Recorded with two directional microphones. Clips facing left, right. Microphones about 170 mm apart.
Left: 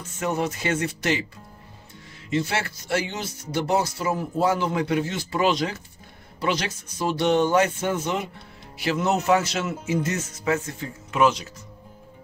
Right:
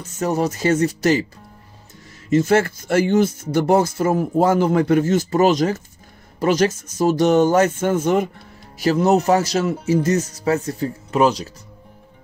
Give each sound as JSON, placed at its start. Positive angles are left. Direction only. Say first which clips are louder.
{"t": 0.0, "sound": "speech", "louder": "right 5 dB", "side_deg": -40}
{"t": 2.2, "sound": "speech", "louder": "right 10 dB", "side_deg": -45}
{"t": 8.7, "sound": "speech", "louder": "right 8 dB", "side_deg": -40}